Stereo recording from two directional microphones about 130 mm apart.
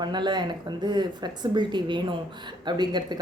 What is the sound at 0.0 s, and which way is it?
A woman's voice, 35° right (ahead or behind).